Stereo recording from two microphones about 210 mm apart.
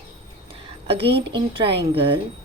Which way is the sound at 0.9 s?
25° right (ahead or behind).